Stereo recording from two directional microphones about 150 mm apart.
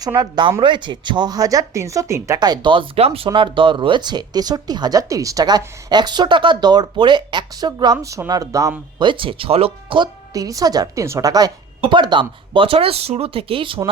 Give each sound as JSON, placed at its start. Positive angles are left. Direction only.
{"t": 0.0, "sound": "speech", "side_deg": -25}
{"t": 9.0, "sound": "a woman's voice", "side_deg": -35}
{"t": 10.3, "sound": "a woman's voice", "side_deg": -25}